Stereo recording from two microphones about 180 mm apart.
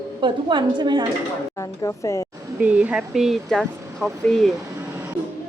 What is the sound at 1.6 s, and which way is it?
Speech, 15° left (ahead or behind).